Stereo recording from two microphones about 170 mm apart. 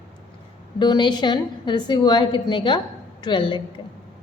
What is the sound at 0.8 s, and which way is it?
A woman's voice, 25° left (ahead or behind).